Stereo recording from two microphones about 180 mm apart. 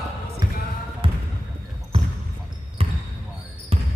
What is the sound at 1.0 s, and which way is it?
Basketball bounce, 30° right (ahead or behind).